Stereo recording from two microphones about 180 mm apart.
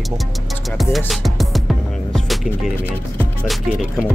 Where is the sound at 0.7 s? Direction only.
Centre (ahead or behind).